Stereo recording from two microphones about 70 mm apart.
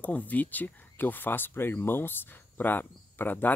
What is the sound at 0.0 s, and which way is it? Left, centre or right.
Speech, left.